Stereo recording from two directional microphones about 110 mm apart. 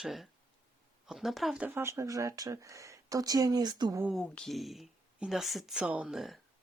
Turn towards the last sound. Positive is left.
turn(degrees=0)  # may be behind; listen again after turning